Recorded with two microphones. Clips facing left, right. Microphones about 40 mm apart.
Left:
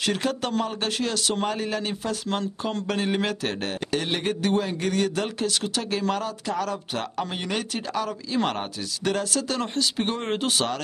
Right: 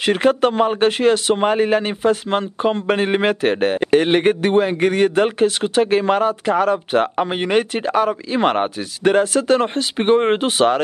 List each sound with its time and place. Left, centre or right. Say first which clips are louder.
0.0 s a man's voice: right 11 dB; right